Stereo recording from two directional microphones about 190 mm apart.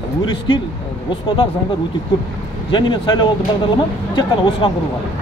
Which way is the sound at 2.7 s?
25° left (ahead or behind).